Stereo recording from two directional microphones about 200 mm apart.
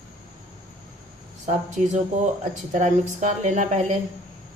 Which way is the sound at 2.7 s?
35° right (ahead or behind).